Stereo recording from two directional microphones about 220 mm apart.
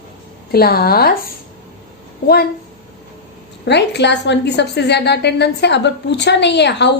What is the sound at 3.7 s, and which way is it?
A woman's voice, 50° left (ahead or behind).